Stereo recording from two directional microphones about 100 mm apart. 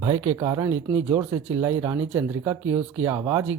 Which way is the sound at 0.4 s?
40° right (ahead or behind).